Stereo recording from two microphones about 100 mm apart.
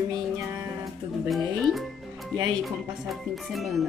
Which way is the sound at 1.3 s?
5° left (ahead or behind).